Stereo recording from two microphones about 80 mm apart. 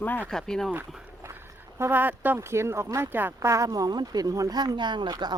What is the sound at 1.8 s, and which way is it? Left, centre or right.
Speech, right.